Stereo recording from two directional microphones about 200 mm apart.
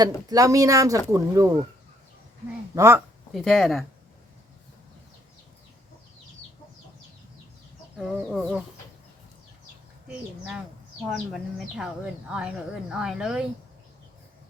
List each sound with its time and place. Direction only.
0.0 s speech: 20° right (ahead or behind)
2.7 s speech: 15° right (ahead or behind)
3.3 s speech: centre (ahead or behind)
7.9 s speech: centre (ahead or behind)
10.1 s speech: 5° right (ahead or behind)
11.8 s speech: 5° right (ahead or behind)